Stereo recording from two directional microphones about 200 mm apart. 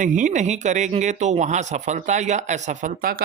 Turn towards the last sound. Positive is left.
turn(degrees=-45)  # may be behind; listen again after turning